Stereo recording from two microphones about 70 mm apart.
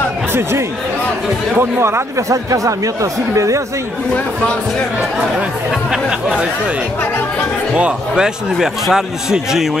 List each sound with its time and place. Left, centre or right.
0.3 s speech: right
5.7 s a man's voice: centre
8.1 s a man's voice: centre